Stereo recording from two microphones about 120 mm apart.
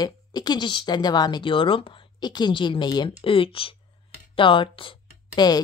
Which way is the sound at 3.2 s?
50° left (ahead or behind).